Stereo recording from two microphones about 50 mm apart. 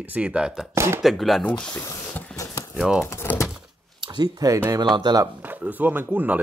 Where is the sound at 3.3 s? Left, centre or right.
Left.